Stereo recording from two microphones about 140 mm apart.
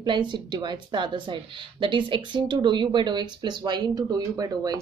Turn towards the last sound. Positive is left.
turn(degrees=-25)  # may be behind; listen again after turning